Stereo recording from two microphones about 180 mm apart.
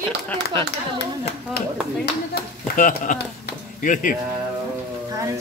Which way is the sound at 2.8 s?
50° left (ahead or behind).